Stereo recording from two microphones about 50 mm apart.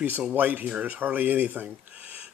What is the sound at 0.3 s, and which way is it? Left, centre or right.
Speech, right.